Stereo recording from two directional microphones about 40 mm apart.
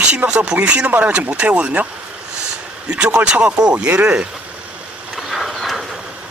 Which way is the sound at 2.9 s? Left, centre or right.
Right.